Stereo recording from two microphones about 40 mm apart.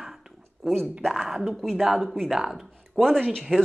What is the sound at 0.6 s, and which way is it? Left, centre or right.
A woman's voice, centre.